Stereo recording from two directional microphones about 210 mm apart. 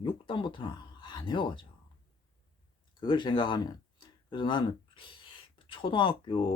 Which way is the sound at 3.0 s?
20° left (ahead or behind).